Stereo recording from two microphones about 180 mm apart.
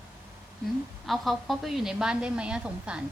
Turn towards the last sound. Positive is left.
turn(degrees=-5)  # may be behind; listen again after turning